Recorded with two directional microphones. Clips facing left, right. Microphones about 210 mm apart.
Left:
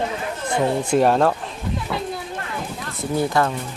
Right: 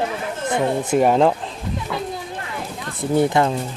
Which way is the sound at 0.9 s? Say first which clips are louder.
Right 2 dB; 10° right (ahead or behind).